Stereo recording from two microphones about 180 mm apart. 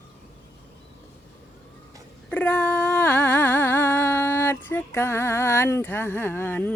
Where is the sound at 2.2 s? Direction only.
5° left (ahead or behind).